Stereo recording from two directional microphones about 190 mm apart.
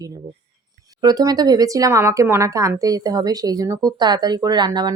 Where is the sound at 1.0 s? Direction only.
20° right (ahead or behind).